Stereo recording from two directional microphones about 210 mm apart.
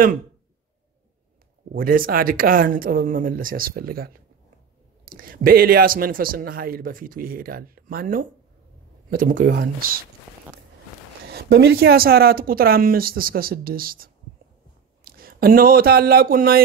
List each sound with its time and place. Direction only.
1.7 s speech: 45° right (ahead or behind)
11.3 s speech: 50° right (ahead or behind)